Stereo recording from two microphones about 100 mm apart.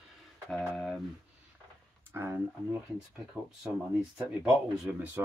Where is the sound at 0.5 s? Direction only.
Centre (ahead or behind).